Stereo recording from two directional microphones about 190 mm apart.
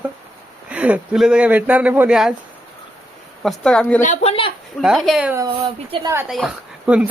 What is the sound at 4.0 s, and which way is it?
Speech, 40° left (ahead or behind).